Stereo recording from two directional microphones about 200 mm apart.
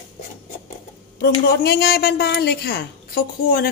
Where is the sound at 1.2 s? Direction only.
55° left (ahead or behind).